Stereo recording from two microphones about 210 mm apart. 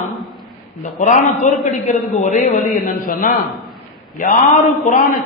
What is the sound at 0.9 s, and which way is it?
A woman's voice, 35° left (ahead or behind).